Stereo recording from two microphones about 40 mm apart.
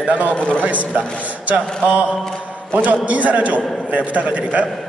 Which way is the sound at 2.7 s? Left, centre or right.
Right.